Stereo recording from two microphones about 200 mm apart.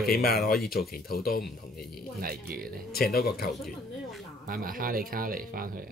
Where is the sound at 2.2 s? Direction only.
45° right (ahead or behind).